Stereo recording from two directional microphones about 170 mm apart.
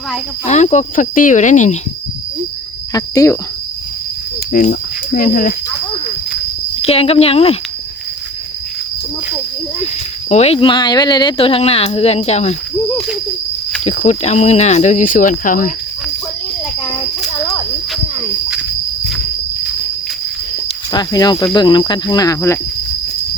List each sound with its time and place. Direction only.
0.4 s speech: 45° left (ahead or behind)
2.9 s speech: 20° left (ahead or behind)
4.5 s speech: 55° left (ahead or behind)
6.8 s speech: 35° left (ahead or behind)
9.8 s speech: 40° left (ahead or behind)
13.8 s speech: 40° left (ahead or behind)
17.2 s a sound: centre (ahead or behind)
20.9 s speech: 25° left (ahead or behind)